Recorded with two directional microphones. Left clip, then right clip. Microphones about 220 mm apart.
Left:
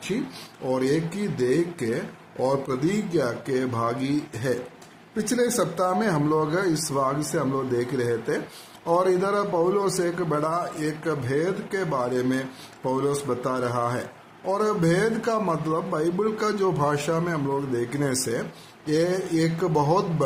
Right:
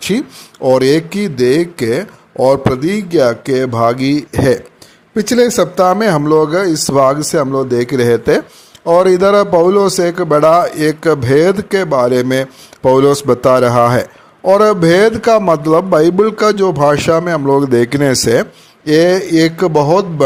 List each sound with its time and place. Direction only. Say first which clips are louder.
0.6 s a man's voice: right 15 dB; 40° right (ahead or behind)